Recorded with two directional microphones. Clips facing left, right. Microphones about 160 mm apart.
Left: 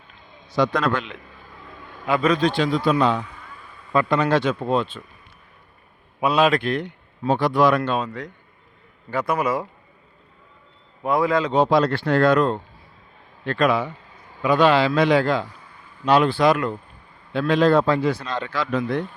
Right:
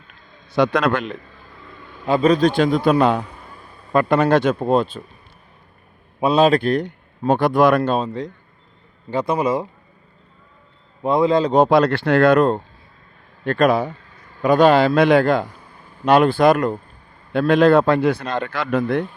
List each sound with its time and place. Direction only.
0.5 s speech: 70° right (ahead or behind)
2.0 s a man's voice: 30° right (ahead or behind)
6.1 s a man's voice: 30° right (ahead or behind); by 7.8 s 55° right (ahead or behind)
7.8 s a man's voice: 30° right (ahead or behind)
11.0 s a man's voice: 25° right (ahead or behind)
11.5 s a man's voice: 55° right (ahead or behind)
17.5 s speech: 60° right (ahead or behind)